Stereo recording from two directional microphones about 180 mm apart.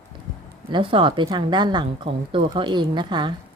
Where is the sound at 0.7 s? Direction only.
30° right (ahead or behind).